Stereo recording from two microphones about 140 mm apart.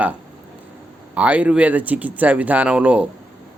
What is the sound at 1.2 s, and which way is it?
A man's voice, 10° right (ahead or behind).